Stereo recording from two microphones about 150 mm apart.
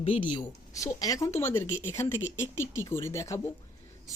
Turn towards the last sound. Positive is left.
turn(degrees=20)  # may be behind; listen again after turning